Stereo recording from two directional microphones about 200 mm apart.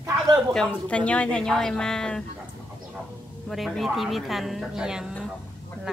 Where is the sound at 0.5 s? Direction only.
5° left (ahead or behind).